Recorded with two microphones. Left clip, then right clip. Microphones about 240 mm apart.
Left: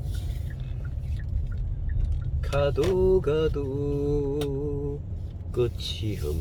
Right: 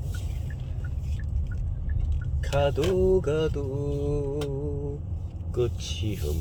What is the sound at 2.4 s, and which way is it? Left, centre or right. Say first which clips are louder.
Mantra: even; centre.